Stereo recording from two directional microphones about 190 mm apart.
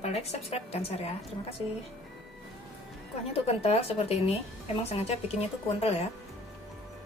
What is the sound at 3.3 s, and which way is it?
A woman's voice, 30° left (ahead or behind).